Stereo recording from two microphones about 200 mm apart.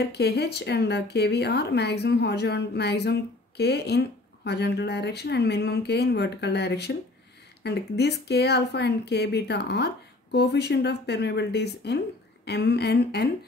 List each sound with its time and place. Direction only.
0.1 s speech: 55° left (ahead or behind)